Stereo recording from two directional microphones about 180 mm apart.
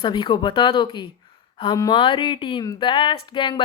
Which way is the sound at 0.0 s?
25° left (ahead or behind).